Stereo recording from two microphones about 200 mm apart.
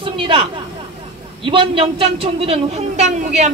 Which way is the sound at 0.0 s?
25° right (ahead or behind).